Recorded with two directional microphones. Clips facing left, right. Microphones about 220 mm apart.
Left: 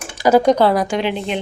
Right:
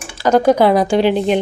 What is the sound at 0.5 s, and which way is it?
Speech, 15° right (ahead or behind).